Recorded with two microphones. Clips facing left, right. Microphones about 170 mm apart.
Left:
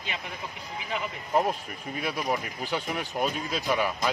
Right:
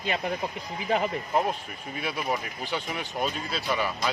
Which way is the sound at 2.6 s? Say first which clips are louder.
Left 1 dB; 10° left (ahead or behind).